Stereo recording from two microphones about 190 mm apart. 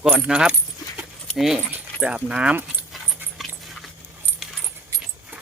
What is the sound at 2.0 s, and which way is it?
Dog, 5° right (ahead or behind).